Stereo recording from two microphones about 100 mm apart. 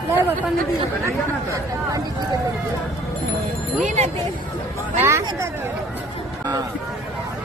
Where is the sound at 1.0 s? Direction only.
30° right (ahead or behind).